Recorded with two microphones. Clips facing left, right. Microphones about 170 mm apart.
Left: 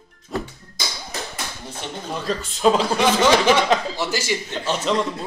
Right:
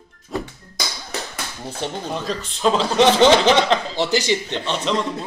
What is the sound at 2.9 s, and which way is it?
Speech, 25° right (ahead or behind).